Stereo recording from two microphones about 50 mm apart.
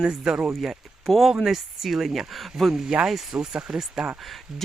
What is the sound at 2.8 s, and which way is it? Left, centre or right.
Speech, centre.